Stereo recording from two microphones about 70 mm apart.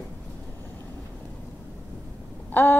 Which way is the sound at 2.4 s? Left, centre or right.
Left.